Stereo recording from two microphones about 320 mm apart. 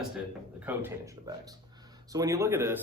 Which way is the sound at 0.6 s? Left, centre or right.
Centre.